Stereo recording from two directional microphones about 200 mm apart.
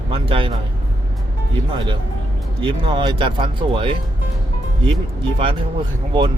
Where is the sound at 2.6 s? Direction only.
25° right (ahead or behind).